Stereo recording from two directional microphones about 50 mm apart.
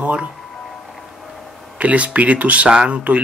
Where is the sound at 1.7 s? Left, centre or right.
Right.